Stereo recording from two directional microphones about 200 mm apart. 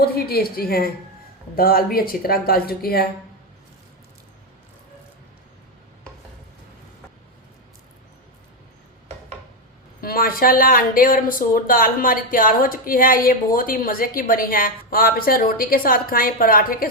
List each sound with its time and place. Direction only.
0.0 s speech: 50° left (ahead or behind)
10.0 s speech: 50° left (ahead or behind)